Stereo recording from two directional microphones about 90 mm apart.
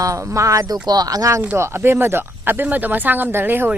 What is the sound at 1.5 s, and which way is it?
Speech, 30° right (ahead or behind).